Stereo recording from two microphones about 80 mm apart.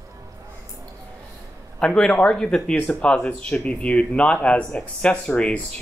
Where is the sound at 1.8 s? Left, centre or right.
Centre.